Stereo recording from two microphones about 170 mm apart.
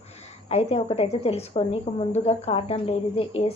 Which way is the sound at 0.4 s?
35° left (ahead or behind).